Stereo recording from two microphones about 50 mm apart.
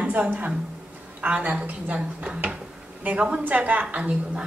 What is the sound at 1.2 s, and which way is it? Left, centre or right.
A woman's voice, right.